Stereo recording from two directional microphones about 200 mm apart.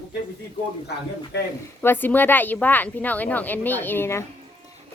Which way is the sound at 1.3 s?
55° left (ahead or behind).